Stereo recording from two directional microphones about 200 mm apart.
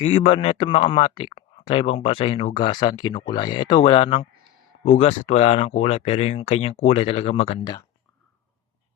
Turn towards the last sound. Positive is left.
turn(degrees=30)  # may be behind; listen again after turning